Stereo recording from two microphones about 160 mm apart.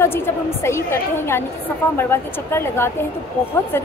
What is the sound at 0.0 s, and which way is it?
A woman's voice, 15° left (ahead or behind).